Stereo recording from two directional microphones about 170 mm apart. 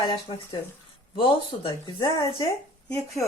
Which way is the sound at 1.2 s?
30° left (ahead or behind).